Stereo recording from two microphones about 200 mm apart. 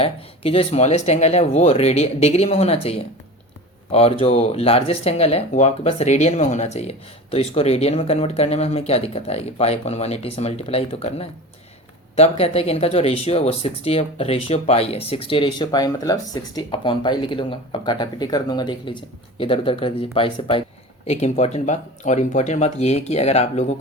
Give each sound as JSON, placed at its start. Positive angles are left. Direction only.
{"t": 0.0, "sound": "speech", "side_deg": 30}